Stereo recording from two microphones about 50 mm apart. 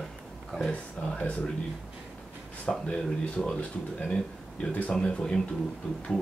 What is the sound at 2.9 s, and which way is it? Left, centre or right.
Speech, centre.